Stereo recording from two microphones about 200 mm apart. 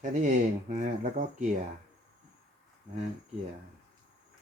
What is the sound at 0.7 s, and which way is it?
Speech, 40° right (ahead or behind).